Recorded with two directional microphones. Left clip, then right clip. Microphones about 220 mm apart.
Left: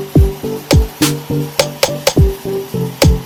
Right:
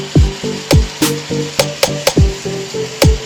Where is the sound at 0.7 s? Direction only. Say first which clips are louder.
Even; centre (ahead or behind).